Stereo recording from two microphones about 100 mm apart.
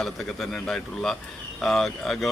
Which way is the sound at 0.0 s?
5° left (ahead or behind).